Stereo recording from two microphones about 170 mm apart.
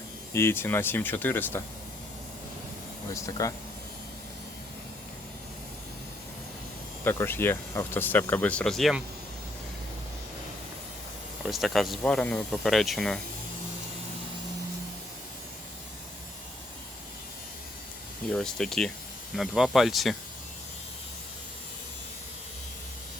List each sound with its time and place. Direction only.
0.3 s speech: 15° left (ahead or behind)
3.1 s speech: 20° left (ahead or behind)
7.0 s speech: 15° left (ahead or behind)
11.4 s speech: centre (ahead or behind)
18.3 s speech: 5° left (ahead or behind)